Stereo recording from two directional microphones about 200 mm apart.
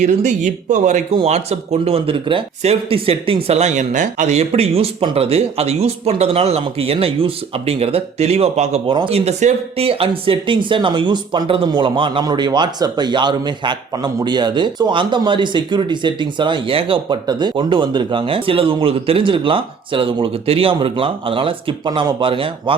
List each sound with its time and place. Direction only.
0.0 s speech: 35° right (ahead or behind)